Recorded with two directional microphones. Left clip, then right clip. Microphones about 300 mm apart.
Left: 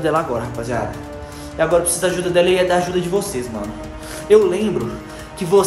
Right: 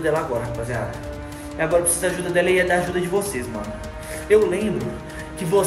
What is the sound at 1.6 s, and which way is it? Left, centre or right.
Speech, centre.